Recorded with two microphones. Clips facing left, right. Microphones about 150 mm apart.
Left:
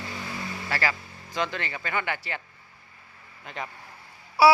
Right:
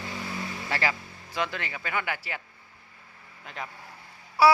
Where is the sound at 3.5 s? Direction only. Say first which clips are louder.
Left 3 dB; centre (ahead or behind).